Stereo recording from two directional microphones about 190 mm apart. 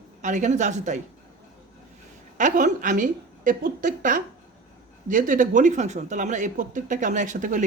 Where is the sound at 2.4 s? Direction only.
40° right (ahead or behind).